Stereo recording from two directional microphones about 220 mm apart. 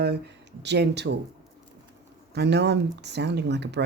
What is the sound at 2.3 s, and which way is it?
Speech, 50° right (ahead or behind).